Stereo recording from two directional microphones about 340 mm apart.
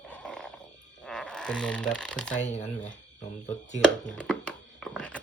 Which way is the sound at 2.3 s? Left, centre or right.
Left.